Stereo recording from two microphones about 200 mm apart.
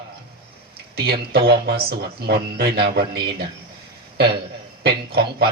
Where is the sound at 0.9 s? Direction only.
50° right (ahead or behind).